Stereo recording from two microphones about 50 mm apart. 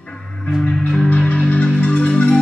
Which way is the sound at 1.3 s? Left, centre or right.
Left.